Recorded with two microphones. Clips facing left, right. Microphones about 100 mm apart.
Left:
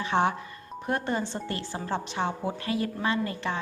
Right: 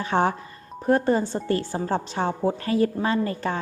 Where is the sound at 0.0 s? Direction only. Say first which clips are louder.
Right 3 dB; 40° right (ahead or behind).